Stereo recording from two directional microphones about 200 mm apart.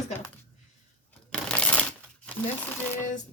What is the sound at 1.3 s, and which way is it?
Shuffling cards, 5° left (ahead or behind).